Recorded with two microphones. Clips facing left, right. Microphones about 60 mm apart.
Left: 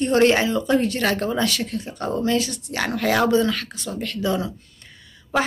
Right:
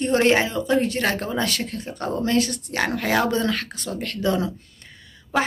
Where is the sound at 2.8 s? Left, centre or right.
Right.